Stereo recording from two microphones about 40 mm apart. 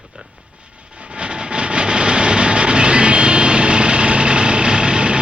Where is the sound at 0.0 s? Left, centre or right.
Right.